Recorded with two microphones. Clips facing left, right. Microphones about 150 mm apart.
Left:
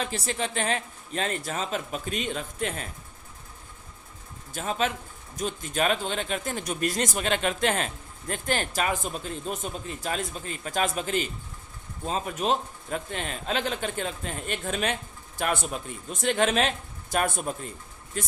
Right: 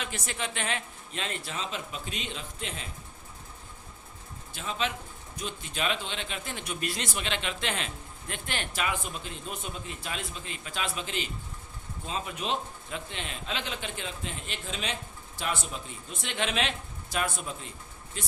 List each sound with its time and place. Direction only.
0.0 s speech: 35° left (ahead or behind); by 2.9 s 50° left (ahead or behind)
4.5 s speech: 45° left (ahead or behind)